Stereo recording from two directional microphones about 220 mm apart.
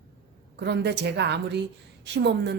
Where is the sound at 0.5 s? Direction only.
50° right (ahead or behind).